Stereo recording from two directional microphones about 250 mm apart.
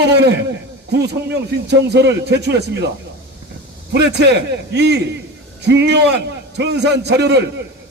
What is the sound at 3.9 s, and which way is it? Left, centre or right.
A man's voice, right.